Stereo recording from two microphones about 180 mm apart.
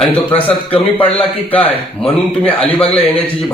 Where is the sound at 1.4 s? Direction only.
10° left (ahead or behind).